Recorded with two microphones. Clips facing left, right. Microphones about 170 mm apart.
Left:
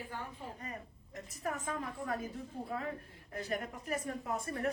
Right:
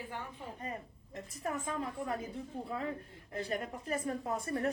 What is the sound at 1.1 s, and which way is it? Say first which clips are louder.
Speech: right 1 dB; 25° right (ahead or behind).